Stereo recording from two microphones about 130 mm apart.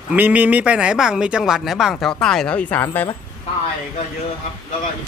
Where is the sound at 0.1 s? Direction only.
10° right (ahead or behind); by 3.1 s 15° left (ahead or behind).